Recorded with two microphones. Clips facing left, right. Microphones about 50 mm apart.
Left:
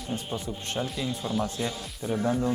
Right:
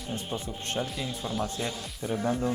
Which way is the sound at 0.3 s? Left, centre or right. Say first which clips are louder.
Left 1 dB; right.